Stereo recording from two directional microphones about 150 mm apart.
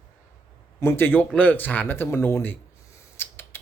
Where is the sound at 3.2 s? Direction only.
15° left (ahead or behind).